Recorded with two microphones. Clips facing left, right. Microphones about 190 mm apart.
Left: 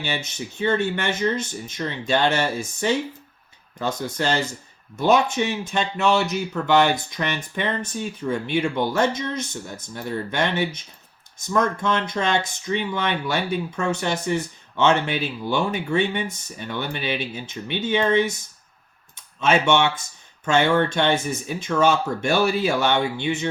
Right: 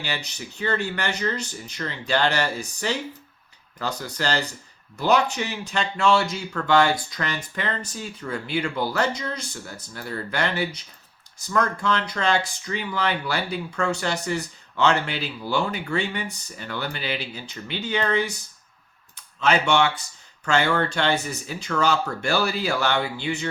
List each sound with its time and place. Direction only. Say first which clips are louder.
0.0 s speech: left 3 dB; 20° left (ahead or behind)
3.8 s speech: left 4 dB; 20° left (ahead or behind)
19.4 s speech: left 2 dB; 20° left (ahead or behind)